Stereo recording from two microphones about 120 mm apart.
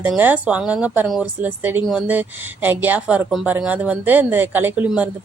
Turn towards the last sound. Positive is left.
turn(degrees=-15)  # may be behind; listen again after turning